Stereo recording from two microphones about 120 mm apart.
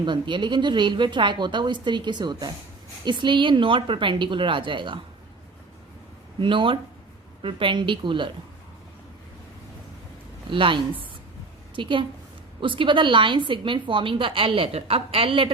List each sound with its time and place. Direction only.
0.0 s a woman's voice: 40° right (ahead or behind)
6.4 s a woman's voice: 45° right (ahead or behind)
10.5 s a woman's voice: 45° right (ahead or behind)